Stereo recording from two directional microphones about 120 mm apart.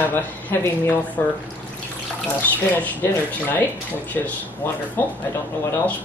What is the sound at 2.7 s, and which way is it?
Speech, 15° left (ahead or behind).